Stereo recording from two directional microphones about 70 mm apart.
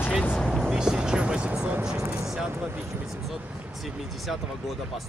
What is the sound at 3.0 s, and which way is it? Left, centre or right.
Speech, centre.